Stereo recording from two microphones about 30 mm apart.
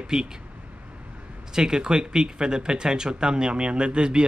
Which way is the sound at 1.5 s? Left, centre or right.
Right.